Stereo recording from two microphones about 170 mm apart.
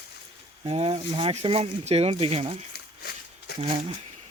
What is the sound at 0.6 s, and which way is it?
Speech, 35° right (ahead or behind).